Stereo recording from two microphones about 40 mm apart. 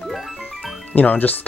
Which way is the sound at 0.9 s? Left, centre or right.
Left.